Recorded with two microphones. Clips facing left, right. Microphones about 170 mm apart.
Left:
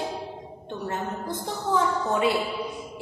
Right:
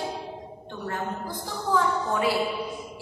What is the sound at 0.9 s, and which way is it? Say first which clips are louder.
A woman's voice: even; 20° left (ahead or behind).